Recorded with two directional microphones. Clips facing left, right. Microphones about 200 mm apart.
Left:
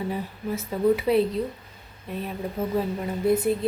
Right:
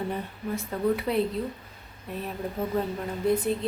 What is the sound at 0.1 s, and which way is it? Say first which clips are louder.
A woman's voice: left 2 dB; 5° left (ahead or behind).